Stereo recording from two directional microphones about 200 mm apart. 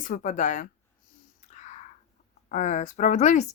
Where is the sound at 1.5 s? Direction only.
35° left (ahead or behind).